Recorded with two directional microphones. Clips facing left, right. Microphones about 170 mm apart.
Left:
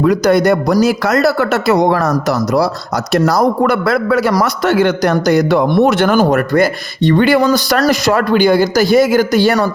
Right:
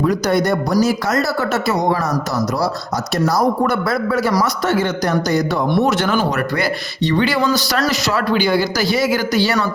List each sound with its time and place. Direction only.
0.0 s speech: 75° left (ahead or behind)
3.1 s a man's voice: 80° left; by 9.6 s 50° left (ahead or behind)